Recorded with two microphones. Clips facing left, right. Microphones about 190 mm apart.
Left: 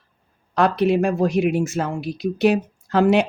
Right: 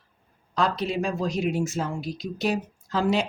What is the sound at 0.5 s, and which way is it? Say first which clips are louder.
Speech: left 8 dB; 60° left (ahead or behind).